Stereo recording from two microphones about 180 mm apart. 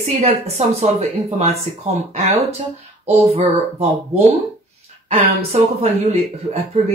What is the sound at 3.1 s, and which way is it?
Speech, 35° right (ahead or behind).